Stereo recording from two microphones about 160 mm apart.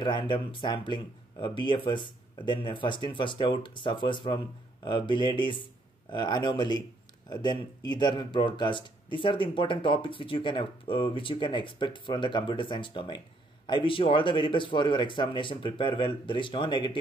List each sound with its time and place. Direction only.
0.0 s speech: 30° left (ahead or behind)